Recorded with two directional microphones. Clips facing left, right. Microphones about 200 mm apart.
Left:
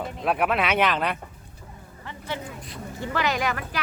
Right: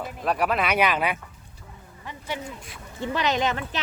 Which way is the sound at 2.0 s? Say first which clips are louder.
Even; 15° right (ahead or behind).